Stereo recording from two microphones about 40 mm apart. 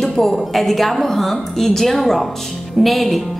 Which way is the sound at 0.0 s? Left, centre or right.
Centre.